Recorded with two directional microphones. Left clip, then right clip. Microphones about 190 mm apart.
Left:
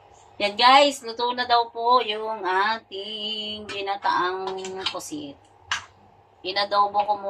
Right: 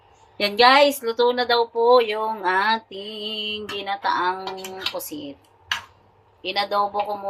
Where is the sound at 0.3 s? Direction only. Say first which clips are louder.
Right 1 dB; 40° right (ahead or behind).